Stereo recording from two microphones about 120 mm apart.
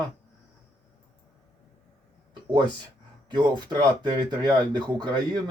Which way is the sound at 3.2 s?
40° right (ahead or behind).